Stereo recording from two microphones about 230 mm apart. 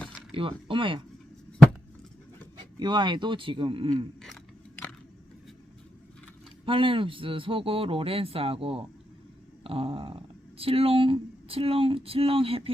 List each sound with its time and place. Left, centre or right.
0.3 s a man's voice: right
2.7 s a man's voice: centre
6.7 s a man's voice: right